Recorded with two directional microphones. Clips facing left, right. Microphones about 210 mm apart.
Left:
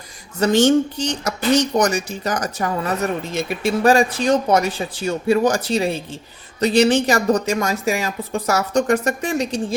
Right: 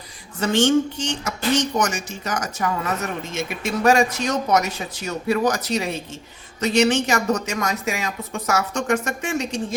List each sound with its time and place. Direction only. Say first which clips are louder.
0.3 s a woman's voice: left 3 dB; 40° left (ahead or behind)